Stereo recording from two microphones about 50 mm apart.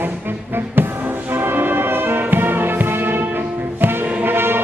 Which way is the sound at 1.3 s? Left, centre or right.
Right.